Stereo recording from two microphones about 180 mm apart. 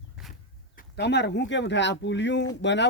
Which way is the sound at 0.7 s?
70° left (ahead or behind).